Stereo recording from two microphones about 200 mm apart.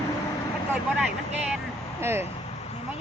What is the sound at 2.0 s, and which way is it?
Speech, 10° right (ahead or behind).